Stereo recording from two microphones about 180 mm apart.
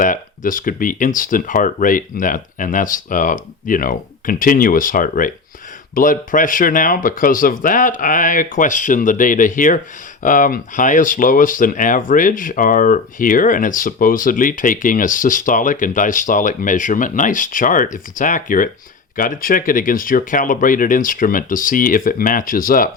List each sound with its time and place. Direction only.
0.0 s speech: 50° left (ahead or behind)